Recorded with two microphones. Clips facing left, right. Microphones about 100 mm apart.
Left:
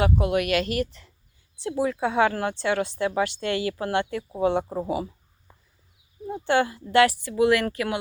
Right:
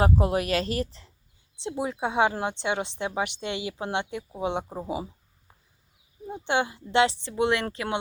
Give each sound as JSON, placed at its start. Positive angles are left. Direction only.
{"t": 0.0, "sound": "speech", "side_deg": -35}
{"t": 6.2, "sound": "speech", "side_deg": -20}